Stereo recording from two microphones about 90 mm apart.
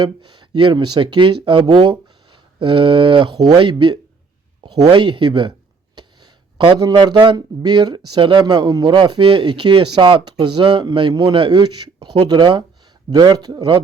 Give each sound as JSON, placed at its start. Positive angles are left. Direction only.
{"t": 0.0, "sound": "speech", "side_deg": -55}
{"t": 4.6, "sound": "a sound", "side_deg": -50}
{"t": 4.9, "sound": "speech", "side_deg": -65}
{"t": 6.7, "sound": "a man's voice", "side_deg": -50}